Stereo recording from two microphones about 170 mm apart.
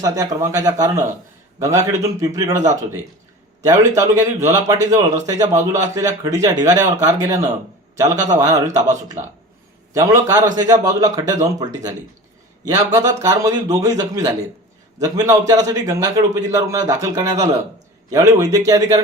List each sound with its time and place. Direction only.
0.0 s a man's voice: 20° right (ahead or behind)